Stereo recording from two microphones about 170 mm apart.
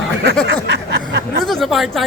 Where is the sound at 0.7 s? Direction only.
80° right.